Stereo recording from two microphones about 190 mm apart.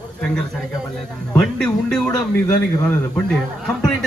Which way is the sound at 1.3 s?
5° left (ahead or behind).